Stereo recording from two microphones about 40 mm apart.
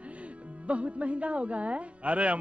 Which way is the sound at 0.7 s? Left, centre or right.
Right.